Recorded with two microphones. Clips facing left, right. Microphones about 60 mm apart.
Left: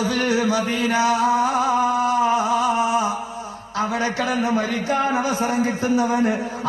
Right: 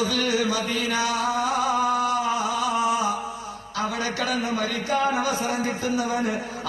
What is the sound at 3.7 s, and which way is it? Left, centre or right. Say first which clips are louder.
A man's voice: left 5 dB; left.